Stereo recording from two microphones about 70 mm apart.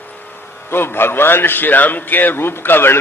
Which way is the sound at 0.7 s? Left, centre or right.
Left.